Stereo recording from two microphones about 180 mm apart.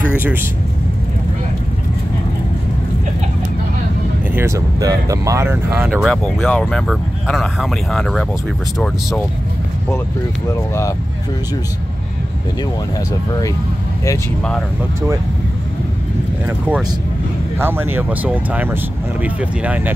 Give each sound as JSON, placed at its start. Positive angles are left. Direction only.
{"t": 0.2, "sound": "speech", "side_deg": -10}
{"t": 4.4, "sound": "speech", "side_deg": -15}
{"t": 5.9, "sound": "speech", "side_deg": 0}
{"t": 10.7, "sound": "speech", "side_deg": 15}
{"t": 16.4, "sound": "speech", "side_deg": -10}